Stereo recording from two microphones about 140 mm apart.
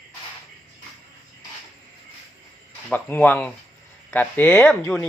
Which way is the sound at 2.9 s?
15° left (ahead or behind).